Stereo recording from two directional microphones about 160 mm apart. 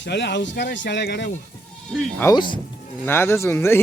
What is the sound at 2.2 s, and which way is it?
A man's voice, 15° left (ahead or behind).